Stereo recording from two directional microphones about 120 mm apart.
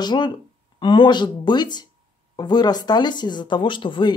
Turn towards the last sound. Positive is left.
turn(degrees=40)  # may be behind; listen again after turning